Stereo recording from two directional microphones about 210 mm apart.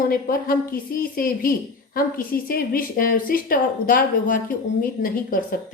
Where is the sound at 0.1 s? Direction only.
45° left (ahead or behind).